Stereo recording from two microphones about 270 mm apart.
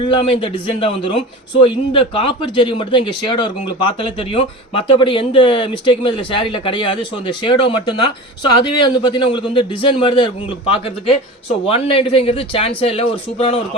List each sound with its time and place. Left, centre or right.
0.0 s a man's voice: centre